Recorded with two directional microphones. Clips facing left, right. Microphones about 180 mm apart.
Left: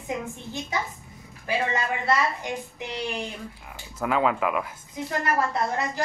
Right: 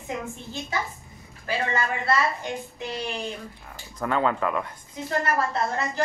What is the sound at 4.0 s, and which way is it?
Speech, 5° left (ahead or behind).